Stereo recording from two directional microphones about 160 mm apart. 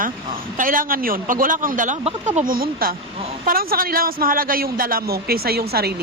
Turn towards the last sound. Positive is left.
turn(degrees=-75)  # may be behind; listen again after turning